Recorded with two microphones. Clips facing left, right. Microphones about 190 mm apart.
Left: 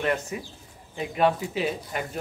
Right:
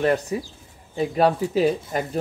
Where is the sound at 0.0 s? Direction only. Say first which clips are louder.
Right 6 dB; 35° right (ahead or behind).